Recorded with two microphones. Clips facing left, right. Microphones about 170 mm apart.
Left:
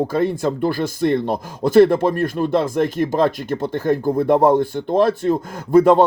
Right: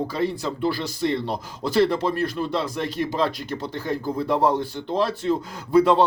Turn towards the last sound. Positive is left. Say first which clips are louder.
# left 5 dB
turn(degrees=50)  # may be behind; listen again after turning